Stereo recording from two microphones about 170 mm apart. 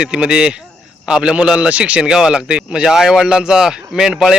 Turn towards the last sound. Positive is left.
turn(degrees=-5)  # may be behind; listen again after turning